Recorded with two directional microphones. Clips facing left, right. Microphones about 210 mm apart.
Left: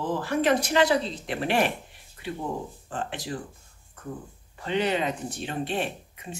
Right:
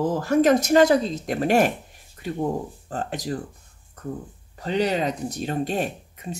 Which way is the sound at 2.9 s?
40° right (ahead or behind).